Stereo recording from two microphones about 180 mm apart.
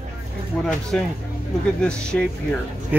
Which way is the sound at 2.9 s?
10° right (ahead or behind).